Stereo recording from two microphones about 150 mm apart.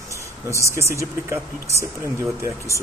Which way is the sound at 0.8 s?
20° right (ahead or behind).